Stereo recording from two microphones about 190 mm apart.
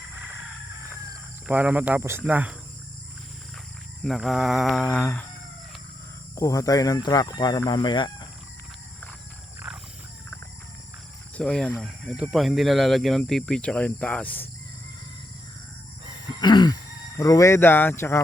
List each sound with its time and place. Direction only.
1.5 s speech: 5° right (ahead or behind)
4.0 s speech: centre (ahead or behind)
6.3 s speech: 15° left (ahead or behind)
9.7 s wild animals: centre (ahead or behind)
11.3 s speech: 5° left (ahead or behind)
16.4 s a sound: 20° left (ahead or behind)
17.2 s speech: 15° left (ahead or behind)